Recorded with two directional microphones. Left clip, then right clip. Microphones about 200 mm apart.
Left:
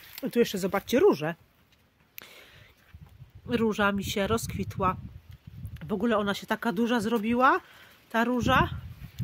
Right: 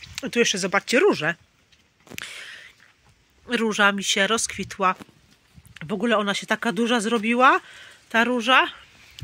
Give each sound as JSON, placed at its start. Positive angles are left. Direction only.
{"t": 0.1, "sound": "speech", "side_deg": 10}
{"t": 2.1, "sound": "a sound", "side_deg": 0}
{"t": 3.4, "sound": "speech", "side_deg": 0}
{"t": 5.8, "sound": "speech", "side_deg": -20}